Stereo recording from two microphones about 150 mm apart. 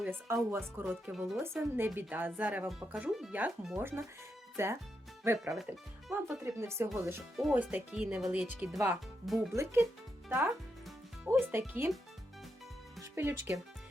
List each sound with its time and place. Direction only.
0.0 s speech: 15° right (ahead or behind)
5.5 s speech: centre (ahead or behind)
6.2 s speech: 20° right (ahead or behind)
7.3 s speech: 5° right (ahead or behind)
10.2 s speech: 15° right (ahead or behind)
13.0 s speech: 15° right (ahead or behind)